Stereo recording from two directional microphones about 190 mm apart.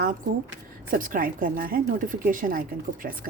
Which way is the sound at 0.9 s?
45° right (ahead or behind).